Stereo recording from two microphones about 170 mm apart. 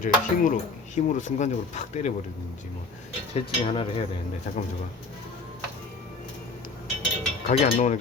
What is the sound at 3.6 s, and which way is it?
Speech, 30° left (ahead or behind).